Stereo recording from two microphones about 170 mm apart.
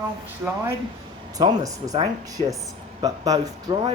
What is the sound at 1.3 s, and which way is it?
Speech, 20° right (ahead or behind).